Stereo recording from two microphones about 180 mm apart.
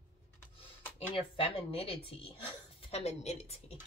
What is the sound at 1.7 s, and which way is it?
A woman's voice, 30° left (ahead or behind).